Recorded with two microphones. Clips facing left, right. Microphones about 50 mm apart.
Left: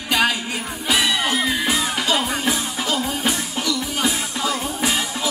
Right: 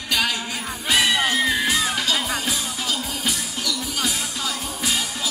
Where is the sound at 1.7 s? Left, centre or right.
Left.